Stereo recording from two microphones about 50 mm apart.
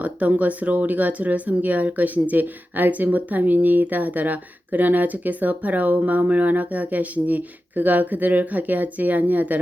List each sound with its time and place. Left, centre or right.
0.0 s speech: right